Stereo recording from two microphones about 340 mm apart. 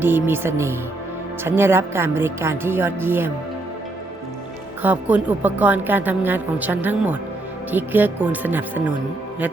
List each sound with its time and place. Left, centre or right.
0.0 s speech: centre
4.8 s a woman's voice: centre